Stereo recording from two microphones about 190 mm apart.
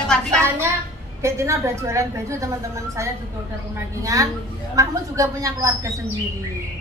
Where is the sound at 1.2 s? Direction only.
15° right (ahead or behind).